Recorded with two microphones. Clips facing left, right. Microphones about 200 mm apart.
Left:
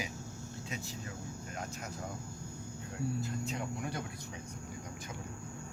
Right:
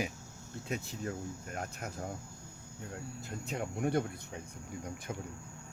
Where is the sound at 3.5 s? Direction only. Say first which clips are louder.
Right 4 dB; 55° right (ahead or behind).